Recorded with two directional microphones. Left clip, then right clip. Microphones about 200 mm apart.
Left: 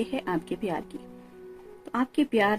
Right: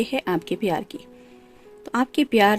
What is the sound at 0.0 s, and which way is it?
A woman's voice, 45° right (ahead or behind).